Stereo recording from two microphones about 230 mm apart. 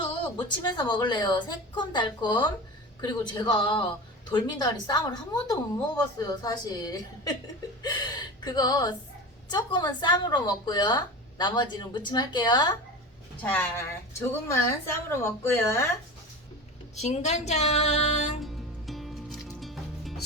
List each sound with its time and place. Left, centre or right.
0.0 s a woman's voice: centre
13.4 s speech: centre
16.9 s a woman's voice: left
18.4 s music: centre